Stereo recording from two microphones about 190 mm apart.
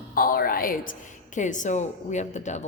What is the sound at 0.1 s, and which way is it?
A woman's voice, 50° left (ahead or behind).